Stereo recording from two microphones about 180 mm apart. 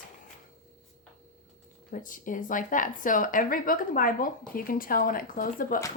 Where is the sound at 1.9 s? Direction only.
50° left (ahead or behind).